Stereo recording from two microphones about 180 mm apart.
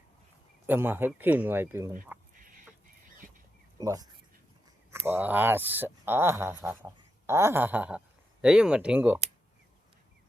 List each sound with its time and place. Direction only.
0.7 s speech: 10° right (ahead or behind)
2.3 s a sound: 50° right (ahead or behind)
3.8 s speech: 20° right (ahead or behind)